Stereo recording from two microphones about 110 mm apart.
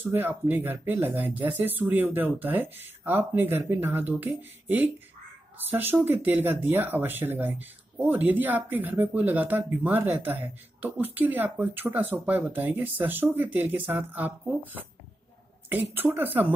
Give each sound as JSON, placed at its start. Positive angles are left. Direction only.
{"t": 0.0, "sound": "speech", "side_deg": -15}